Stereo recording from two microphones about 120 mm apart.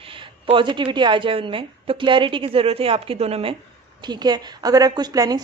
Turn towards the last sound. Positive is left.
turn(degrees=-35)  # may be behind; listen again after turning